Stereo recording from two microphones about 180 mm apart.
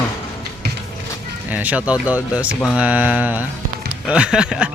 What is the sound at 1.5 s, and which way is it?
Speech, 10° right (ahead or behind).